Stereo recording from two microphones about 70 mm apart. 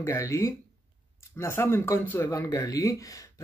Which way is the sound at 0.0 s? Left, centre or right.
Left.